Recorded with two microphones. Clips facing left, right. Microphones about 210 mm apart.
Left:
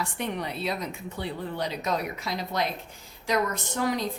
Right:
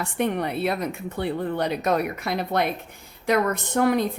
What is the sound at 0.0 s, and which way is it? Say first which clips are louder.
A woman's voice: right 7 dB; 55° right (ahead or behind).